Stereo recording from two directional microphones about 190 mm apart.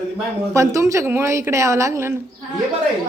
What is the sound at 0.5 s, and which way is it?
A woman's voice, 15° right (ahead or behind).